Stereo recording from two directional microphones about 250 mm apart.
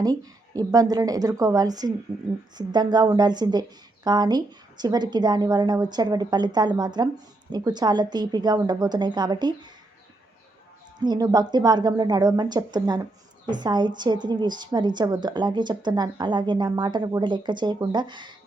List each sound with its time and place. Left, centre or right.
0.0 s a woman's voice: centre
11.0 s a woman's voice: centre